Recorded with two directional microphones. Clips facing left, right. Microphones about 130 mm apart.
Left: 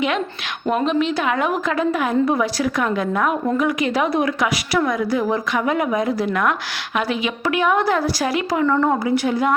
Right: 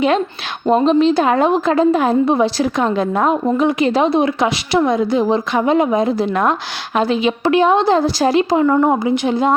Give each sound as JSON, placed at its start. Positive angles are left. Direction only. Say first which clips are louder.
{"t": 0.7, "sound": "a woman's voice", "louder": "right 7 dB", "side_deg": -30}